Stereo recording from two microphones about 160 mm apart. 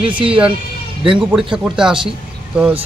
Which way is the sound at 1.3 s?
5° right (ahead or behind).